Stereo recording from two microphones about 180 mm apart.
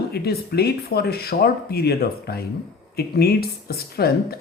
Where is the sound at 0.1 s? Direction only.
60° left (ahead or behind).